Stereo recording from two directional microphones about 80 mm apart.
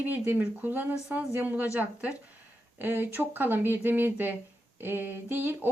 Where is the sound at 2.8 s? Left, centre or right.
Right.